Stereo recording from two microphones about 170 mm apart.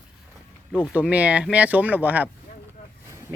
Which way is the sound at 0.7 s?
5° right (ahead or behind).